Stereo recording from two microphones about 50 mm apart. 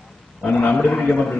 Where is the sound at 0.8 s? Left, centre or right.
Left.